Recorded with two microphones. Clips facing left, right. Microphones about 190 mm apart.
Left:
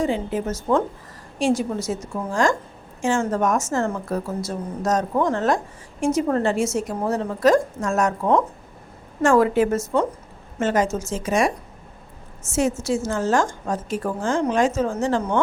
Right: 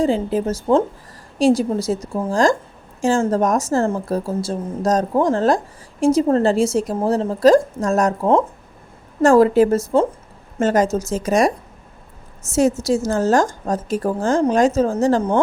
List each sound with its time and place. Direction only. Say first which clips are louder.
0.0 s a woman's voice: right 5 dB; 35° right (ahead or behind)